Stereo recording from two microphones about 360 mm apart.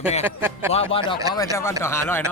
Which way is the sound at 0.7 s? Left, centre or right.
Centre.